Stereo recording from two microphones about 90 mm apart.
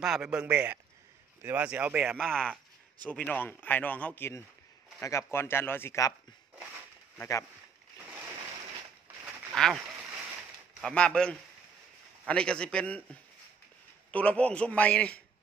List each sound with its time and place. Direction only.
0.0 s a man's voice: 5° right (ahead or behind)
2.1 s a man's voice: 5° left (ahead or behind); by 5.9 s 25° left (ahead or behind)
7.2 s speech: 35° left (ahead or behind)
9.6 s speech: 5° left (ahead or behind)
10.8 s a man's voice: 10° left (ahead or behind)